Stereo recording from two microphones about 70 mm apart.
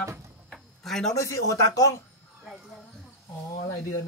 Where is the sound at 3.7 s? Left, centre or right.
Left.